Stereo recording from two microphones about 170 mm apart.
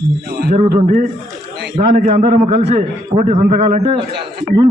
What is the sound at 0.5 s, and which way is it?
Speech, 40° right (ahead or behind).